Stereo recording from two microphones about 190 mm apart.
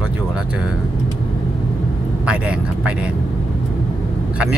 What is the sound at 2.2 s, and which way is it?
Speech, 5° right (ahead or behind).